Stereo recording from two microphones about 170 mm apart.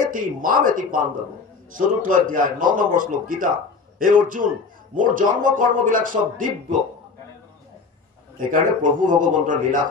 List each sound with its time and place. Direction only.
0.1 s speech: 55° right (ahead or behind)
8.4 s speech: 55° right (ahead or behind)